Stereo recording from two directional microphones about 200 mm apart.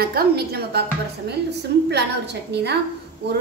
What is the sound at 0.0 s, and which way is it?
Speech, 50° right (ahead or behind).